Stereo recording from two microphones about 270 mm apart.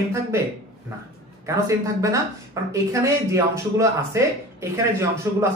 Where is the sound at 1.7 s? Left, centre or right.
Centre.